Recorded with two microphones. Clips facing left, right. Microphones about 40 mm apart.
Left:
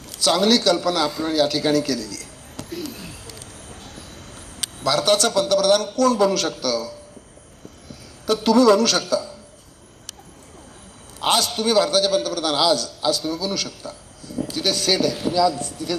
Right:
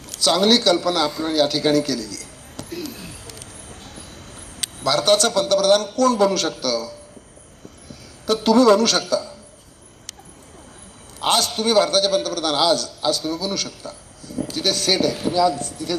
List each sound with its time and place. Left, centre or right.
0.2 s a man's voice: right
2.0 s a sound: left
2.6 s a sound: right
4.8 s a man's voice: right
8.3 s a man's voice: right
11.3 s a man's voice: right